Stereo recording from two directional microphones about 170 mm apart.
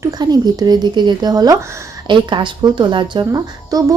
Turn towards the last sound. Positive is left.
turn(degrees=-20)  # may be behind; listen again after turning